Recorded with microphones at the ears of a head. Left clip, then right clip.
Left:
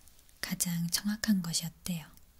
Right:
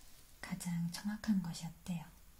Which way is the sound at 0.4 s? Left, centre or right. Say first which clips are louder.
Left 8 dB; left.